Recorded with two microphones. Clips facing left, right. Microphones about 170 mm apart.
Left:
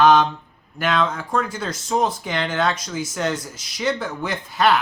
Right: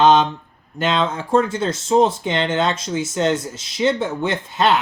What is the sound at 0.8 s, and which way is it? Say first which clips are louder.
Speech: right 1 dB; 25° right (ahead or behind).